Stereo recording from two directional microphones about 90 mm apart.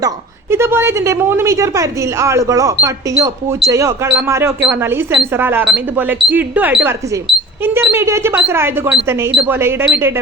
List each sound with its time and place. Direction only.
0.5 s a woman's voice: 30° right (ahead or behind)